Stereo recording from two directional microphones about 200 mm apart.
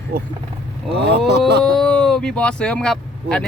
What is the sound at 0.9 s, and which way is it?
Speech, 55° right (ahead or behind).